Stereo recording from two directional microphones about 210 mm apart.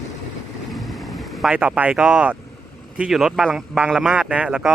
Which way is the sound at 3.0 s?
Centre (ahead or behind).